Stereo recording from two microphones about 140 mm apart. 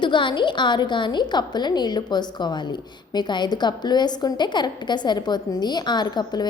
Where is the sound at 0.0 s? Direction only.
35° left (ahead or behind).